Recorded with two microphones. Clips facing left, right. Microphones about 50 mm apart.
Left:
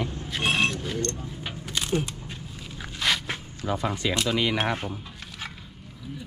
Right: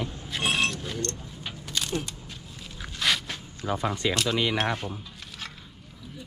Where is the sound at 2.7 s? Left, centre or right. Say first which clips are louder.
Even; centre.